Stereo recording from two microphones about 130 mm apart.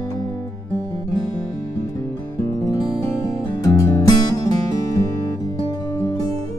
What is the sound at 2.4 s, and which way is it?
Music, 25° left (ahead or behind).